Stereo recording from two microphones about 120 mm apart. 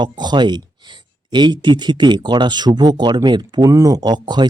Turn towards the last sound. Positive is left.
turn(degrees=-35)  # may be behind; listen again after turning